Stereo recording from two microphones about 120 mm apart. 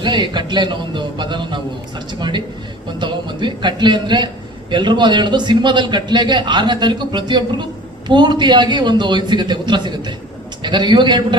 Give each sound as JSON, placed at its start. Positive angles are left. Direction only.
{"t": 0.0, "sound": "a man's voice", "side_deg": -40}